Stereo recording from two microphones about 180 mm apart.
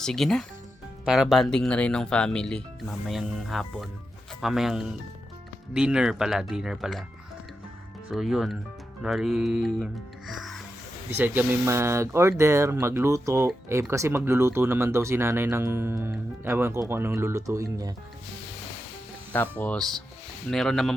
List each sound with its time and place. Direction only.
0.0 s speech: centre (ahead or behind)
8.1 s speech: centre (ahead or behind)
11.2 s speech: 15° right (ahead or behind)
19.3 s speech: 10° left (ahead or behind)